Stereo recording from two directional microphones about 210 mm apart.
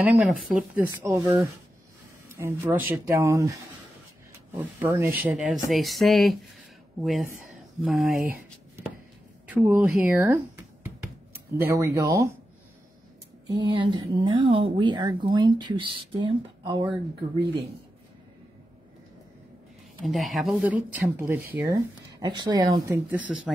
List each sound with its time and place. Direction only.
0.2 s speech: 5° right (ahead or behind)
9.5 s speech: 10° right (ahead or behind)
13.5 s speech: 20° right (ahead or behind)
20.1 s speech: centre (ahead or behind)